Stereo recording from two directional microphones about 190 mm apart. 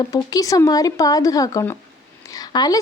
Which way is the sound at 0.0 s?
20° left (ahead or behind).